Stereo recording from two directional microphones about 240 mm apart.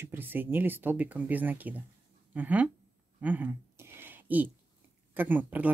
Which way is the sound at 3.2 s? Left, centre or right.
Centre.